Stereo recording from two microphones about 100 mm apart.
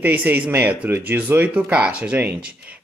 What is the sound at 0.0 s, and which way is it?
Speech, 15° right (ahead or behind).